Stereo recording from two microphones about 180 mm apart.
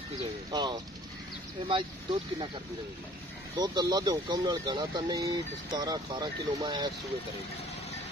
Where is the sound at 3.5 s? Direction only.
25° right (ahead or behind).